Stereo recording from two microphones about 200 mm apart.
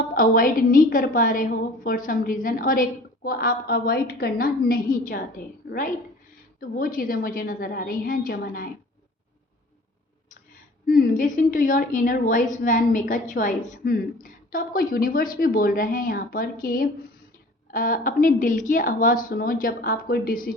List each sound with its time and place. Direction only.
0.1 s a woman's voice: 45° left (ahead or behind)
6.6 s a woman's voice: 45° left (ahead or behind)
10.8 s a woman's voice: 45° left (ahead or behind)